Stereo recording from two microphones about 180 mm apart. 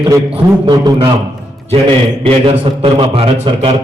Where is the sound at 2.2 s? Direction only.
30° right (ahead or behind).